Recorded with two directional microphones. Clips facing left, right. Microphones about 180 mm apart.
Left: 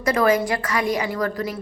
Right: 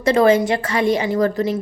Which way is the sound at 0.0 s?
25° right (ahead or behind).